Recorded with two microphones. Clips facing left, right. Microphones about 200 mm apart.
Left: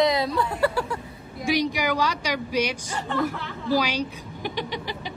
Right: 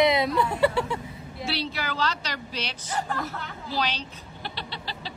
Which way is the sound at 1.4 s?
15° left (ahead or behind).